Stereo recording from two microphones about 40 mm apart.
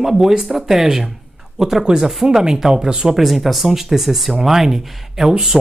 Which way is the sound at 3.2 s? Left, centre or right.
Centre.